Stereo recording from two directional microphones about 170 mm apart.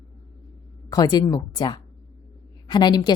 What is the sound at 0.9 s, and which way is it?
A woman's voice, 20° left (ahead or behind).